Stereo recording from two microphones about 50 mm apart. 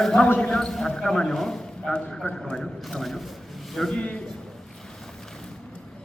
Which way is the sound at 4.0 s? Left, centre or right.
Left.